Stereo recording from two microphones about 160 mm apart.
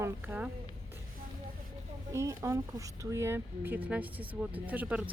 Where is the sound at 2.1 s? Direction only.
20° right (ahead or behind).